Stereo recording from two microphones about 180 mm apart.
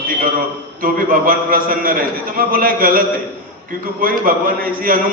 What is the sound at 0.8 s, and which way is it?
A man's voice, 50° right (ahead or behind).